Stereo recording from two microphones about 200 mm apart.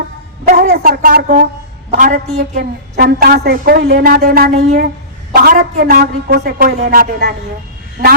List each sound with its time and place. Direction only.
0.4 s a woman's voice: 45° right (ahead or behind)
3.0 s a woman's voice: 50° right (ahead or behind)